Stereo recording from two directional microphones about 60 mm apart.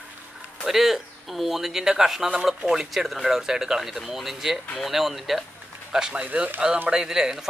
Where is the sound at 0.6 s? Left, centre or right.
Centre; by 6.5 s right.